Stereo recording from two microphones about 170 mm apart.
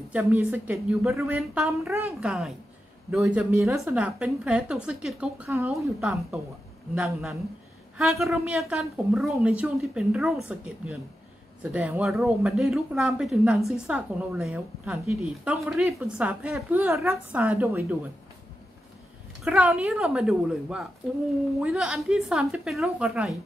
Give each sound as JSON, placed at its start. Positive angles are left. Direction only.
{"t": 0.1, "sound": "speech", "side_deg": -5}
{"t": 2.0, "sound": "a woman's voice", "side_deg": 0}
{"t": 16.8, "sound": "speech", "side_deg": -15}
{"t": 19.4, "sound": "a woman's voice", "side_deg": -5}